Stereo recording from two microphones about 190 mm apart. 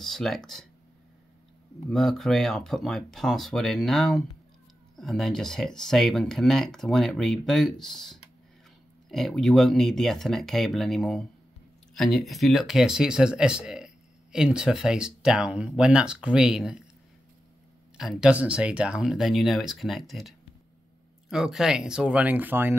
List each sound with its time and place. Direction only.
0.0 s speech: centre (ahead or behind)
1.9 s speech: centre (ahead or behind)
17.9 s speech: centre (ahead or behind)